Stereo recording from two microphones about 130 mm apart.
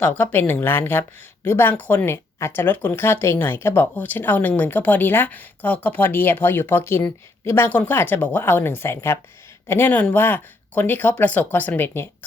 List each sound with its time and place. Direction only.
0.0 s speech: 15° left (ahead or behind)